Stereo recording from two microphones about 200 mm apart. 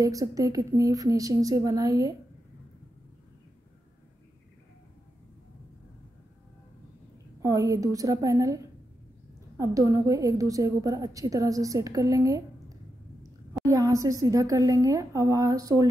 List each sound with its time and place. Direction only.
0.0 s a woman's voice: 15° right (ahead or behind)
7.4 s a woman's voice: 15° right (ahead or behind)
9.6 s a woman's voice: 15° right (ahead or behind)